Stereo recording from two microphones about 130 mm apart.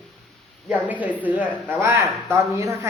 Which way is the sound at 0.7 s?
10° right (ahead or behind).